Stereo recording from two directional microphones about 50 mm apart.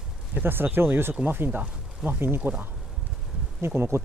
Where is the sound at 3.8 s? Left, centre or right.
Right.